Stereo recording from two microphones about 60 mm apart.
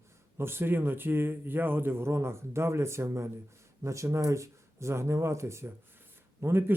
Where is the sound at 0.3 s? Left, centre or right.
Right.